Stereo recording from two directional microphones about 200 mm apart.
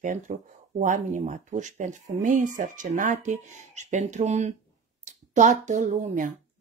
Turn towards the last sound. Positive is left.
turn(degrees=-40)  # may be behind; listen again after turning